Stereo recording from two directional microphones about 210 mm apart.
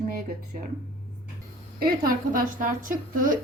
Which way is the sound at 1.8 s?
45° right (ahead or behind).